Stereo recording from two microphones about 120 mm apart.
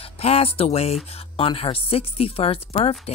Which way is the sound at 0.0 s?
55° left (ahead or behind).